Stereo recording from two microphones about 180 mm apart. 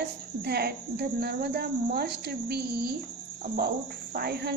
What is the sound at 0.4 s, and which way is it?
Speech, 65° right (ahead or behind).